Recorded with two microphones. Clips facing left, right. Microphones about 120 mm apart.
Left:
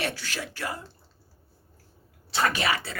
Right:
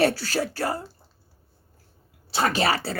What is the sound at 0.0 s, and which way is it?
Speech, 35° right (ahead or behind).